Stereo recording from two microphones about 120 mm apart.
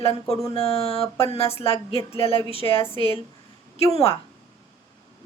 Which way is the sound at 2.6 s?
30° left (ahead or behind).